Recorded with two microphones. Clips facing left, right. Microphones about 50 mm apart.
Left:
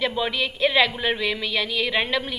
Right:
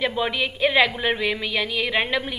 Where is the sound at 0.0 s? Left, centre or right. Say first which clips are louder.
Right 1 dB; centre.